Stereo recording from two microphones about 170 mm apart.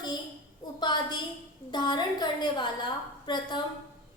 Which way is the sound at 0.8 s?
25° left (ahead or behind).